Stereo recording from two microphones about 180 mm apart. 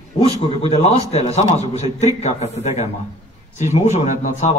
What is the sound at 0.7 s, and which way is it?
A man's voice, 35° left (ahead or behind).